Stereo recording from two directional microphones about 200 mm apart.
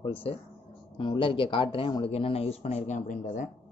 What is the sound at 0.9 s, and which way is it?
Speech, 25° left (ahead or behind).